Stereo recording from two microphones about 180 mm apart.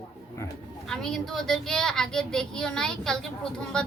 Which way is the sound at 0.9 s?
5° left (ahead or behind).